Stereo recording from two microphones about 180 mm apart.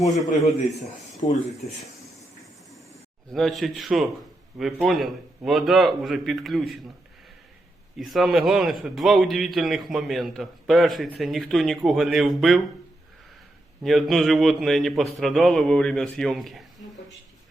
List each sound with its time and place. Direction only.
1.2 s speech: 35° left (ahead or behind)
3.3 s a man's voice: centre (ahead or behind)
7.9 s a man's voice: centre (ahead or behind)
13.8 s a man's voice: centre (ahead or behind)